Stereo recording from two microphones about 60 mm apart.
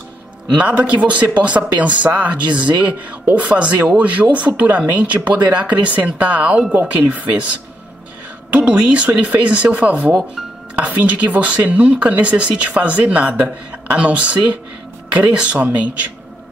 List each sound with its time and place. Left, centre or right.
0.6 s speech: right